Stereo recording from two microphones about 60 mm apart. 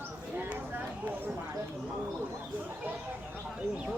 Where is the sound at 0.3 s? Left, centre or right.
Right.